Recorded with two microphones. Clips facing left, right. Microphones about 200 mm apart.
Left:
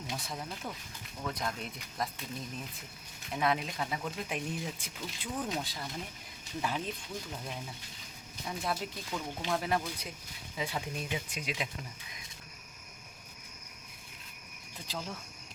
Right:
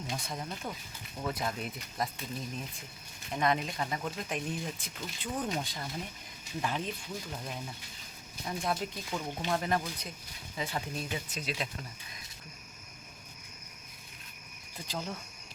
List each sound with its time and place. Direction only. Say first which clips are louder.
0.1 s speech: right 1 dB; centre (ahead or behind)
3.3 s speech: right 1 dB; centre (ahead or behind)
8.4 s speech: right 2 dB; centre (ahead or behind)
14.8 s speech: right 2 dB; centre (ahead or behind)